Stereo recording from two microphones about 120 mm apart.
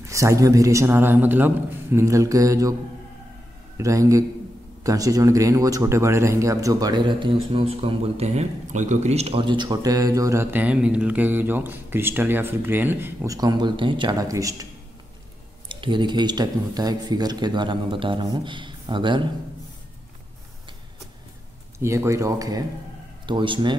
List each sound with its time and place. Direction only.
0.0 s speech: 25° right (ahead or behind)
3.7 s speech: 25° right (ahead or behind); by 9.4 s 60° right (ahead or behind)
9.4 s speech: 40° right (ahead or behind)
14.1 s speech: 30° right (ahead or behind)
15.7 s speech: 40° right (ahead or behind)
21.7 s speech: 25° right (ahead or behind)
23.2 s speech: 40° right (ahead or behind)